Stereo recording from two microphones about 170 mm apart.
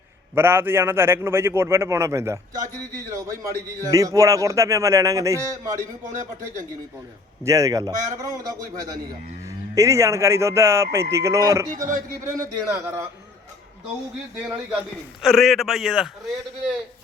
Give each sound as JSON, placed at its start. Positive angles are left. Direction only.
{"t": 0.3, "sound": "a man's voice", "side_deg": -15}
{"t": 3.8, "sound": "a man's voice", "side_deg": -20}
{"t": 7.4, "sound": "a man's voice", "side_deg": -20}
{"t": 11.7, "sound": "speech", "side_deg": -50}
{"t": 12.4, "sound": "a man's voice", "side_deg": -15}
{"t": 15.2, "sound": "speech", "side_deg": 0}